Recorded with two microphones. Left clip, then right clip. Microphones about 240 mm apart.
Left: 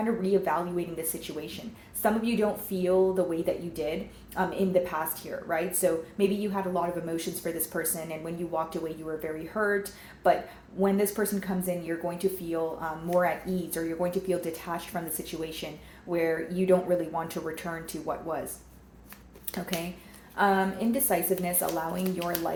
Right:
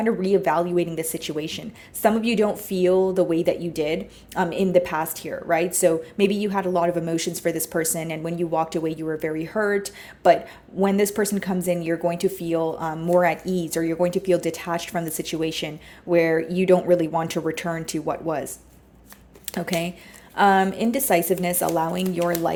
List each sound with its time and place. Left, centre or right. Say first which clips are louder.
0.0 s a woman's voice: right 6 dB; right
19.5 s speech: right 7 dB; right
20.3 s a woman's voice: right 7 dB; right
22.0 s speech: right 8 dB; right